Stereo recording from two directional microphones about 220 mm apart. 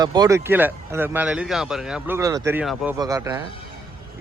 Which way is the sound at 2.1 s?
15° right (ahead or behind).